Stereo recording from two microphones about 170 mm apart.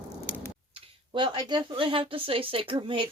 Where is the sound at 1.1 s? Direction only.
25° right (ahead or behind).